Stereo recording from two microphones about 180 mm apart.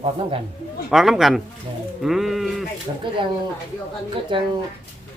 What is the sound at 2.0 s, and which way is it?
Sheep, centre (ahead or behind).